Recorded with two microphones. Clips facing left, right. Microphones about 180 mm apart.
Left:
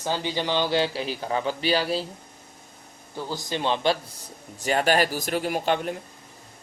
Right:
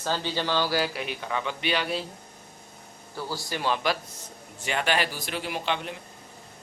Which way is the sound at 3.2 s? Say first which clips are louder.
Left 3 dB; 20° left (ahead or behind).